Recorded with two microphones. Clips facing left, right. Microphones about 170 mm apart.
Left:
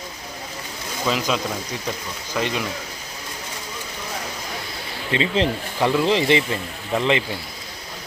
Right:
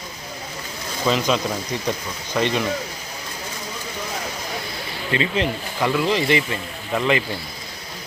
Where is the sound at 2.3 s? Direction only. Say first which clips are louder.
Right 3 dB; 5° left (ahead or behind).